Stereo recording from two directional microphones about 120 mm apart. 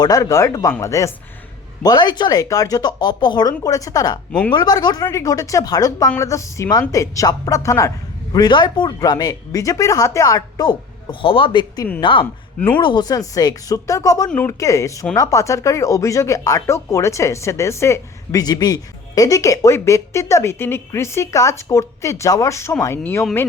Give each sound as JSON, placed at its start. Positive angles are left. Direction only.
{"t": 0.0, "sound": "speech", "side_deg": 30}
{"t": 1.8, "sound": "a man's voice", "side_deg": 35}
{"t": 4.3, "sound": "speech", "side_deg": 10}
{"t": 4.5, "sound": "a man's voice", "side_deg": 35}
{"t": 12.2, "sound": "speech", "side_deg": 15}
{"t": 12.8, "sound": "speech", "side_deg": 40}